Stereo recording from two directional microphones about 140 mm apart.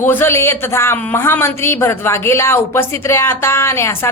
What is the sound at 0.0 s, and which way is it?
A woman's voice, 15° left (ahead or behind).